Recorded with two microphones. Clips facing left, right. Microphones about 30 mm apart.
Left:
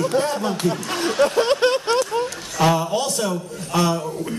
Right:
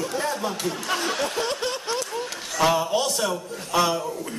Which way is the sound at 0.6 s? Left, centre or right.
Centre.